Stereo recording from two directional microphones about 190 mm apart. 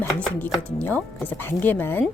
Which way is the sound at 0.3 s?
10° left (ahead or behind).